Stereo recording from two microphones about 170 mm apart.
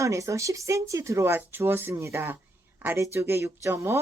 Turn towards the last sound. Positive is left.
turn(degrees=-15)  # may be behind; listen again after turning